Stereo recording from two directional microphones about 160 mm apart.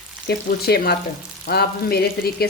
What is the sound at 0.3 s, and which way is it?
A woman's voice, 75° left (ahead or behind).